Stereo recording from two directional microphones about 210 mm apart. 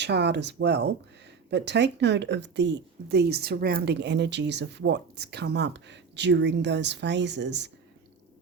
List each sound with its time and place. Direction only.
0.0 s speech: 55° right (ahead or behind)